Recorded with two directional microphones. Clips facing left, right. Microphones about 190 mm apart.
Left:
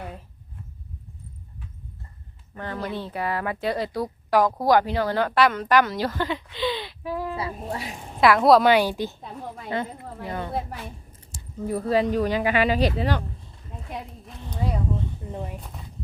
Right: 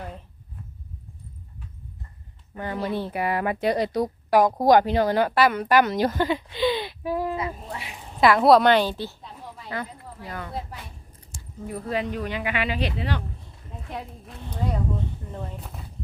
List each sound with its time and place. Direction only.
2.6 s a woman's voice: 15° right (ahead or behind)
7.3 s speech: 35° left (ahead or behind)
8.2 s a woman's voice: centre (ahead or behind)
9.6 s a woman's voice: 25° left (ahead or behind); by 13.2 s 40° left (ahead or behind)
15.2 s a woman's voice: 20° left (ahead or behind)